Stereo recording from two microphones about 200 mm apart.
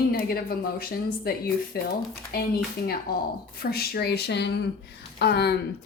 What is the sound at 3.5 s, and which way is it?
A woman's voice, 50° left (ahead or behind).